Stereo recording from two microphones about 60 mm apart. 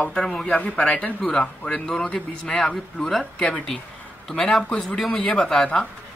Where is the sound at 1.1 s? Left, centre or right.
Centre.